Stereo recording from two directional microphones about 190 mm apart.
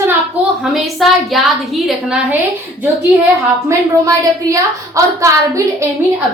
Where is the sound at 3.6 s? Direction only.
15° right (ahead or behind).